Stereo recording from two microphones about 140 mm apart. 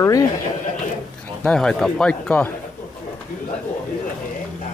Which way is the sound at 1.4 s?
5° left (ahead or behind).